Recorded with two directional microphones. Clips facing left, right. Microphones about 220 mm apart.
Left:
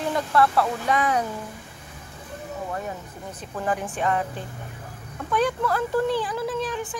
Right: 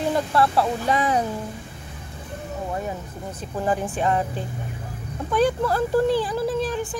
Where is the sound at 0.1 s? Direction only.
30° right (ahead or behind).